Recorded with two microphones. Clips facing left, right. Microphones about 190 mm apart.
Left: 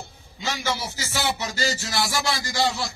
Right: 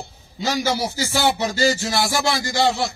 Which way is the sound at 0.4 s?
40° right (ahead or behind).